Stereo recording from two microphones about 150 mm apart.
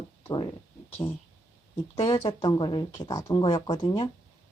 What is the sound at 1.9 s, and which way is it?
Speech, 40° left (ahead or behind).